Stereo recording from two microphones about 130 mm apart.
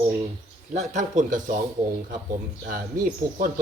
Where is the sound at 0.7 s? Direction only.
65° right (ahead or behind); by 1.6 s 90° right.